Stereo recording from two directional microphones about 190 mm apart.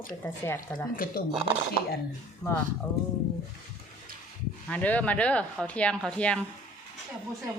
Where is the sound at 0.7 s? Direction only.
10° left (ahead or behind).